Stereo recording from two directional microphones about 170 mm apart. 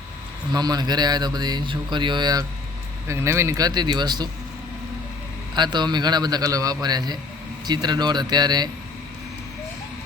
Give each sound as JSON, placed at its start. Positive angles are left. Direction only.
{"t": 0.5, "sound": "speech", "side_deg": -25}
{"t": 5.5, "sound": "speech", "side_deg": -25}